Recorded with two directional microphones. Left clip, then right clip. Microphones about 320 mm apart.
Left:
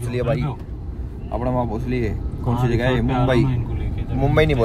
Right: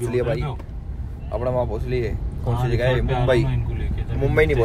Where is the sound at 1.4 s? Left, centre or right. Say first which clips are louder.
Even; centre.